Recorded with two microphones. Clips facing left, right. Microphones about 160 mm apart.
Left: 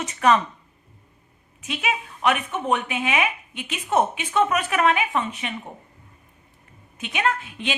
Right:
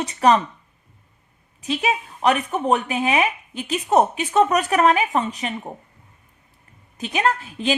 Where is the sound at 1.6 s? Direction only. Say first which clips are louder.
Right 4 dB; 35° right (ahead or behind).